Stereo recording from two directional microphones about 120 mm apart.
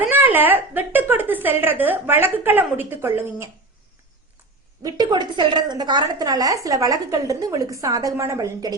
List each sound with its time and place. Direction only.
0.1 s a woman's voice: 15° right (ahead or behind)
4.8 s a woman's voice: 35° right (ahead or behind)